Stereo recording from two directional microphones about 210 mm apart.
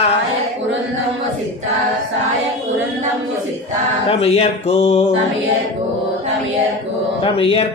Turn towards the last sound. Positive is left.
turn(degrees=25)  # may be behind; listen again after turning